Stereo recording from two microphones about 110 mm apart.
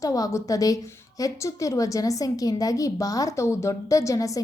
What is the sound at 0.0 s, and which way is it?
A woman's voice, 30° left (ahead or behind).